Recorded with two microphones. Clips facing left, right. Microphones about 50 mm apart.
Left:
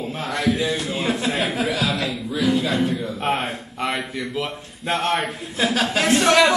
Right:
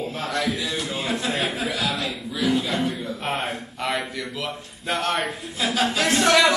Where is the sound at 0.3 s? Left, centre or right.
Left.